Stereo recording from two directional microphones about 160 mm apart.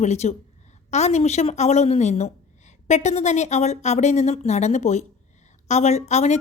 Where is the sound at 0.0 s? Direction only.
45° left (ahead or behind).